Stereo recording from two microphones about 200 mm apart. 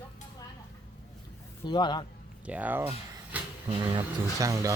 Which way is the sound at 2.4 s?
5° right (ahead or behind).